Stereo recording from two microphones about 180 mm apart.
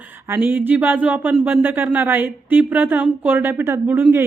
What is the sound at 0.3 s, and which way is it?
A woman's voice, 10° right (ahead or behind).